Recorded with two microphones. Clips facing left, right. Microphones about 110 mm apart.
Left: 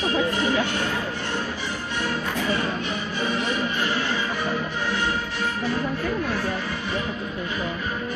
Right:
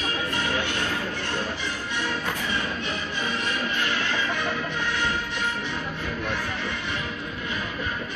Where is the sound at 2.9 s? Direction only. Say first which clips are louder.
Left 3 dB; 15° left (ahead or behind).